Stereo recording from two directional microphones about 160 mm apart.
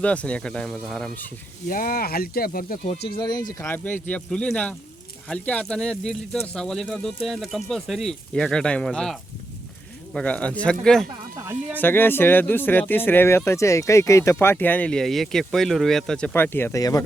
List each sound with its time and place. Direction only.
0.0 s speech: 10° left (ahead or behind)
1.6 s speech: 60° left (ahead or behind)
3.2 s speech: 25° left (ahead or behind)
3.6 s speech: 10° left (ahead or behind)
11.3 s speech: 15° right (ahead or behind)
11.8 s speech: 15° left (ahead or behind)